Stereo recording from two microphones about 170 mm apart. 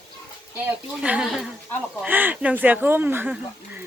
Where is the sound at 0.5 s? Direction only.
10° right (ahead or behind).